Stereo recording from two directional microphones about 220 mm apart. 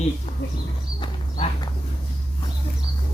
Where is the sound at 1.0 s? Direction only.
25° left (ahead or behind).